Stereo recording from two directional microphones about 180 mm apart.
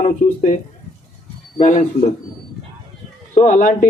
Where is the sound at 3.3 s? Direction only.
45° left (ahead or behind).